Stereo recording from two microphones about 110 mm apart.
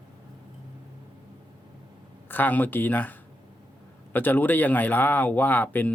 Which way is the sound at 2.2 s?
15° left (ahead or behind).